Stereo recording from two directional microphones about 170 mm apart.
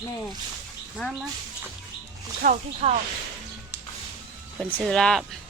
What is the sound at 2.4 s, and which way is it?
Speech, 45° right (ahead or behind).